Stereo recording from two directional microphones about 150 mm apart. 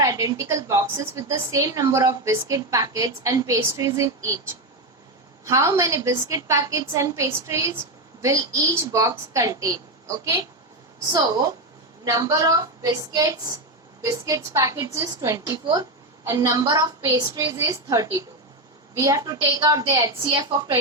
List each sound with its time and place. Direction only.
0.0 s a woman's voice: 25° right (ahead or behind)
5.5 s a woman's voice: 20° right (ahead or behind)
11.1 s a woman's voice: 25° right (ahead or behind)